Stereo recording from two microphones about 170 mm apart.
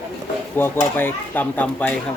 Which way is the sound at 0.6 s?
10° left (ahead or behind).